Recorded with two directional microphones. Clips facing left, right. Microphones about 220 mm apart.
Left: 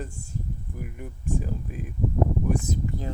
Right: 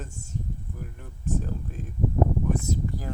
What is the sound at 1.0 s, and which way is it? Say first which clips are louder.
Speech: even; 10° left (ahead or behind).